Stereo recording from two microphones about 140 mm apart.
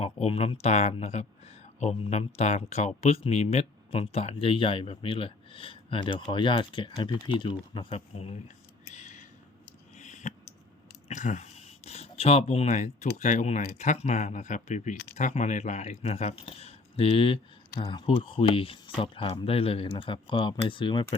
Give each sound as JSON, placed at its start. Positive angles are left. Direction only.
{"t": 0.0, "sound": "speech", "side_deg": 45}
{"t": 8.9, "sound": "a sound", "side_deg": 60}
{"t": 11.1, "sound": "speech", "side_deg": 60}